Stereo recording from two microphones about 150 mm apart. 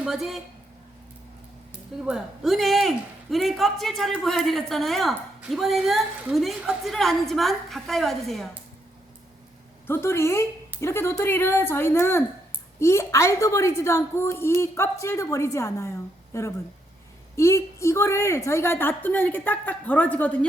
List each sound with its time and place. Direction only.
0.0 s speech: 5° right (ahead or behind)
2.0 s a man's voice: 5° right (ahead or behind)
9.8 s a woman's voice: 15° left (ahead or behind)